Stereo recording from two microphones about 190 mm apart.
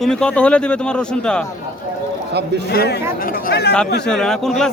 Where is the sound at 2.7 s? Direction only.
55° left (ahead or behind).